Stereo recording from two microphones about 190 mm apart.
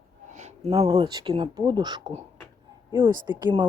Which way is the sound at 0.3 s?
35° right (ahead or behind).